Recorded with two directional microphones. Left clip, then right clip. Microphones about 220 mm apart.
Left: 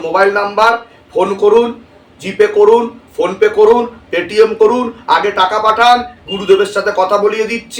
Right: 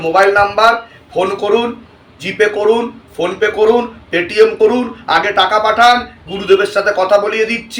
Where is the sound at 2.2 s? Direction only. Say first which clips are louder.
Left 4 dB; 15° left (ahead or behind).